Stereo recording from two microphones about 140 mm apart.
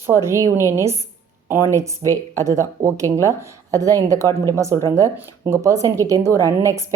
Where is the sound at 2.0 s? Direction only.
20° right (ahead or behind).